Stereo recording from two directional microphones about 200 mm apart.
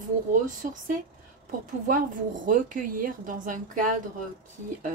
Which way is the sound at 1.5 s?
40° right (ahead or behind).